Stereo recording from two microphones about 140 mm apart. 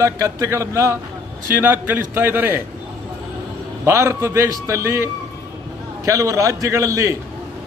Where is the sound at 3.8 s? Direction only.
20° right (ahead or behind).